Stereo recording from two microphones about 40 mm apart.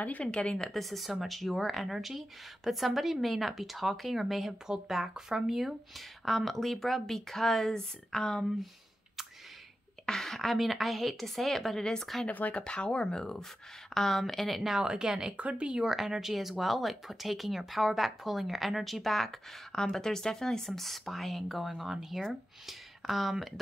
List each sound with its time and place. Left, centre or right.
0.2 s speech: left
0.7 s speech: centre
10.0 s speech: centre
11.8 s speech: centre
12.3 s speech: left
12.6 s speech: left; by 14.8 s centre
15.0 s speech: centre
15.3 s speech: right
15.8 s speech: centre
19.7 s speech: centre